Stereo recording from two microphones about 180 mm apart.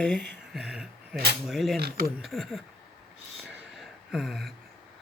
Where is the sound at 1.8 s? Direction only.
55° right (ahead or behind).